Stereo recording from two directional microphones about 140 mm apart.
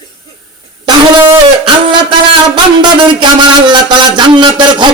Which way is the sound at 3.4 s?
30° right (ahead or behind).